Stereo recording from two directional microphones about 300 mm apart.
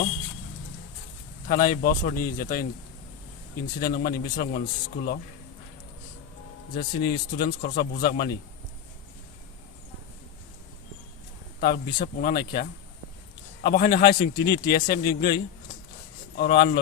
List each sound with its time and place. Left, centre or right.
1.5 s speech: left
3.8 s a man's voice: left
6.7 s a man's voice: left
11.6 s a man's voice: left
16.4 s a man's voice: left